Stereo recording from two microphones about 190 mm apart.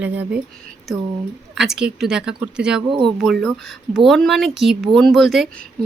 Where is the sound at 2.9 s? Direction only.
25° right (ahead or behind).